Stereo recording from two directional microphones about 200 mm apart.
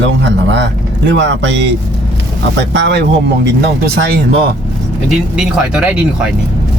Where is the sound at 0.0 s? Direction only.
60° right (ahead or behind).